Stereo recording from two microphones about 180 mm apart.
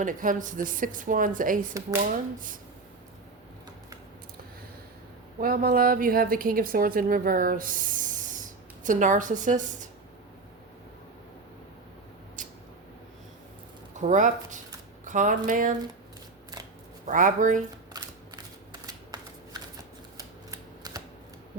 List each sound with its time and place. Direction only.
0.0 s a woman's voice: 50° right (ahead or behind)
5.4 s a woman's voice: 55° right (ahead or behind)
13.9 s a woman's voice: 45° right (ahead or behind)
17.1 s a woman's voice: 45° right (ahead or behind)
17.9 s shuffling cards: 20° right (ahead or behind)
20.1 s typewriter: 20° right (ahead or behind)